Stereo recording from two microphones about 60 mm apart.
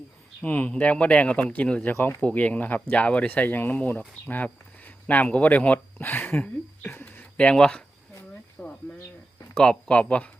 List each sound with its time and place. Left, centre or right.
0.4 s speech: left
1.9 s speech: left
2.2 s speech: left
6.8 s a sound: left
7.3 s speech: centre
8.6 s a sound: centre
9.6 s speech: centre